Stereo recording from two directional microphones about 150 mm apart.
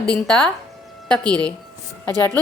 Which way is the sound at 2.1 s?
25° right (ahead or behind).